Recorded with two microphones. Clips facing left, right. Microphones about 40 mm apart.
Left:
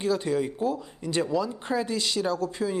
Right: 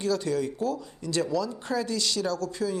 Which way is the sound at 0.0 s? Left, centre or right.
Left.